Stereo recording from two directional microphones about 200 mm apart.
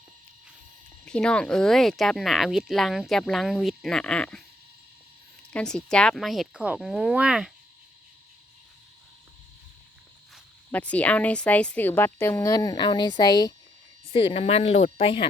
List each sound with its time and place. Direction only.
1.0 s speech: 5° left (ahead or behind)
5.5 s speech: 5° left (ahead or behind)
10.3 s a woman's voice: 5° left (ahead or behind); by 15.3 s 25° left (ahead or behind)